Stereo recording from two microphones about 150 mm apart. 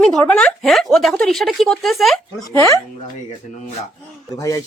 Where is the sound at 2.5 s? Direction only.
20° left (ahead or behind).